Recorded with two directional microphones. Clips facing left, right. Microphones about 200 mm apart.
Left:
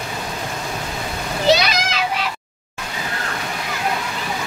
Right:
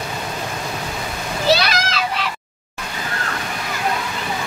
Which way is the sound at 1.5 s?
20° left (ahead or behind).